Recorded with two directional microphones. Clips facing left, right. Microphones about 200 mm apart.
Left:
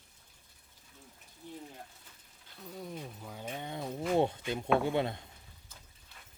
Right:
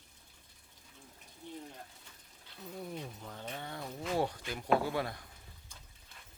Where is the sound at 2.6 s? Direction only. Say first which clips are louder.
Even; centre (ahead or behind); by 5.2 s 25° left (ahead or behind).